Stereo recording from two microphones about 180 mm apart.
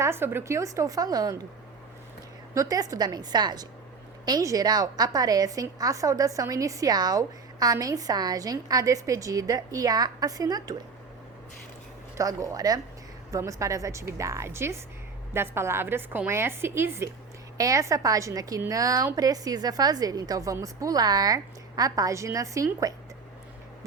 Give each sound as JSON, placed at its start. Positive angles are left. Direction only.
{"t": 0.0, "sound": "a woman's voice", "side_deg": -15}
{"t": 2.6, "sound": "a woman's voice", "side_deg": -20}
{"t": 12.1, "sound": "a woman's voice", "side_deg": -20}